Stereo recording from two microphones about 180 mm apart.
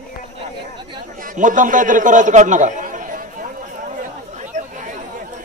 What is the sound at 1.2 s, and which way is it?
A man's voice, 45° right (ahead or behind).